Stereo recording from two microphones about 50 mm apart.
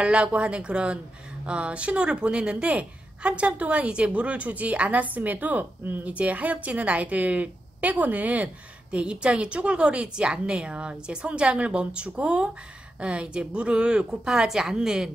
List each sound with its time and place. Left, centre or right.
0.0 s a woman's voice: right
8.9 s a woman's voice: right